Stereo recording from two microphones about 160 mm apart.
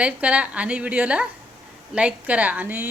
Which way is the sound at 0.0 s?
10° right (ahead or behind).